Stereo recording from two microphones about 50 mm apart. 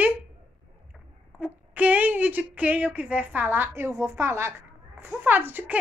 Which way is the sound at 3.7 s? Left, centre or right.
Right.